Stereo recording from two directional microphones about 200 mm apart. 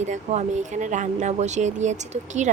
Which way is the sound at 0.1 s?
35° right (ahead or behind).